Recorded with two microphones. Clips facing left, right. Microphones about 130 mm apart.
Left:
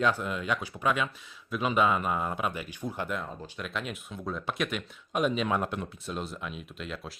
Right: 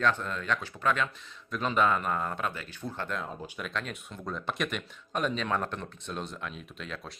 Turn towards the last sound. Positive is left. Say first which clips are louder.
# left 2 dB
turn(degrees=5)  # may be behind; listen again after turning